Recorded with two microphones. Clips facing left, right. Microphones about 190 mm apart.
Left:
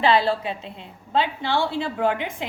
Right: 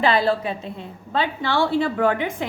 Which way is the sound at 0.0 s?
45° right (ahead or behind).